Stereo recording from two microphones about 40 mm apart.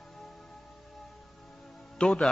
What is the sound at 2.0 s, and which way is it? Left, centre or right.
Speech, left.